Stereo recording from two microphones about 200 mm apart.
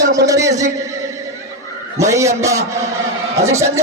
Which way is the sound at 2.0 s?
15° right (ahead or behind).